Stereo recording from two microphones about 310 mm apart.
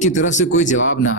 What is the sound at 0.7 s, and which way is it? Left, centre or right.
Speech, left.